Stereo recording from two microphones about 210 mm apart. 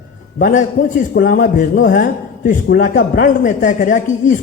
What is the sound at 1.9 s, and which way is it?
A man's voice, 40° left (ahead or behind).